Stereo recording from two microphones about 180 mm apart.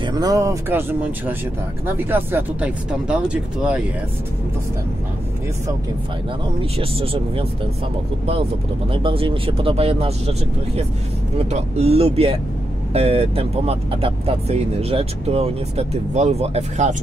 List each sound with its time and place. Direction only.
0.0 s speech: 20° right (ahead or behind); by 3.8 s 5° right (ahead or behind)
6.6 s speech: 30° right (ahead or behind)
8.9 s speech: 30° right (ahead or behind)
11.3 s speech: 35° right (ahead or behind)